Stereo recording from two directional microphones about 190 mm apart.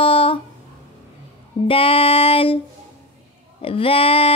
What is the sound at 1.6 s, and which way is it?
Female singing, 30° left (ahead or behind).